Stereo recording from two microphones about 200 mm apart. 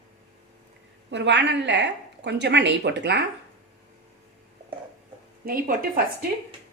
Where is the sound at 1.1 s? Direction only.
60° right (ahead or behind).